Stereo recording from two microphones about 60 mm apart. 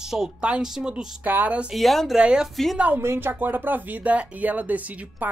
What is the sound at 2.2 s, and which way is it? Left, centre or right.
Speech, centre.